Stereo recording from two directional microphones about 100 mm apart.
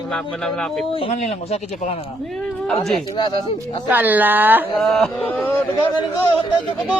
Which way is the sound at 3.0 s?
45° left (ahead or behind).